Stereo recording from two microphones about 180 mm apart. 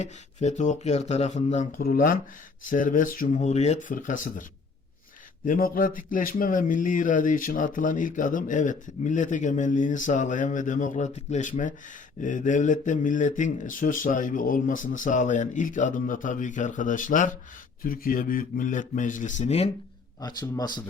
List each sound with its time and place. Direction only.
0.0 s speech: 40° left (ahead or behind)
1.8 s speech: 50° left (ahead or behind)
5.5 s speech: 55° left (ahead or behind); by 19.7 s 35° left (ahead or behind)
20.2 s speech: 25° left (ahead or behind)